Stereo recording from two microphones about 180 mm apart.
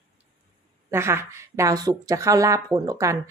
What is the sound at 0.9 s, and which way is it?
A woman's voice, 15° right (ahead or behind).